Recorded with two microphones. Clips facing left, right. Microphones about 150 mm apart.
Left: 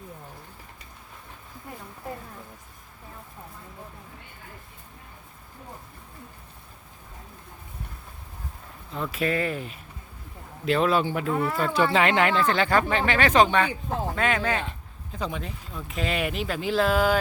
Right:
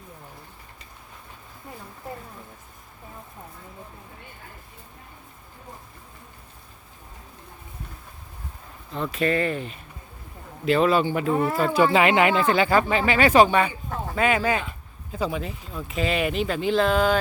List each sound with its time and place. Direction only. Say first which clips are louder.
8.9 s speech: right 3 dB; 5° left (ahead or behind)
11.3 s speech: right 3 dB; 30° right (ahead or behind)
11.6 s speech: right 3 dB; 5° right (ahead or behind)